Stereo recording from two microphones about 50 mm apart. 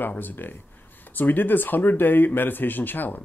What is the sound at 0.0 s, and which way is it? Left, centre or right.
Speech, left.